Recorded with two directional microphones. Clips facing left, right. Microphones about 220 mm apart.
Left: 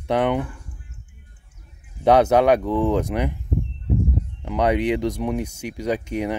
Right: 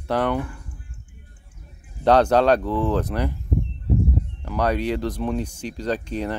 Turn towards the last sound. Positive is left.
turn(degrees=15)  # may be behind; listen again after turning